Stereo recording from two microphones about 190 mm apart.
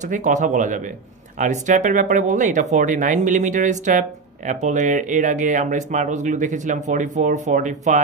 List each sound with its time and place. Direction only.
0.0 s speech: 40° right (ahead or behind)